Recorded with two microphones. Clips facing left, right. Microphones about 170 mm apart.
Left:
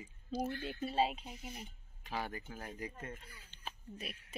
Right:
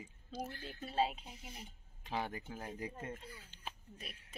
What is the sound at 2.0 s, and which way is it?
Speech, 20° right (ahead or behind).